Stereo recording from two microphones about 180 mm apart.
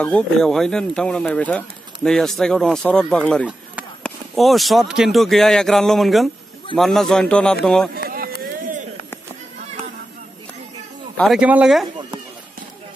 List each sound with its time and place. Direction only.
0.0 s speech: 5° left (ahead or behind)
7.9 s run: 55° right (ahead or behind)
11.1 s speech: centre (ahead or behind)